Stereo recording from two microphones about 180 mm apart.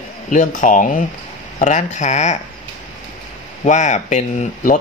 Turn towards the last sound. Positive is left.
turn(degrees=45)  # may be behind; listen again after turning